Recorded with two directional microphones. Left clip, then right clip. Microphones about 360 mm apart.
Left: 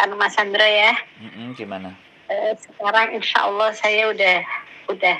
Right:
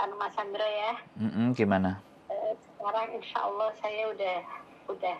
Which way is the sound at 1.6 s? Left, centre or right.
Right.